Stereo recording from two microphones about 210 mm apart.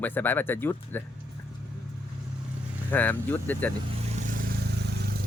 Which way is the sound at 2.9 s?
10° left (ahead or behind).